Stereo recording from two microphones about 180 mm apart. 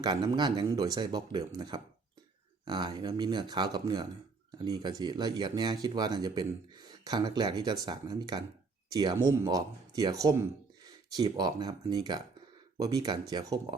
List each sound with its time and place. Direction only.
0.0 s speech: 25° right (ahead or behind)